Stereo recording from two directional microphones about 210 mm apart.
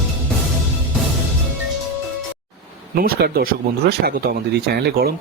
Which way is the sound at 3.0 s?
45° right (ahead or behind).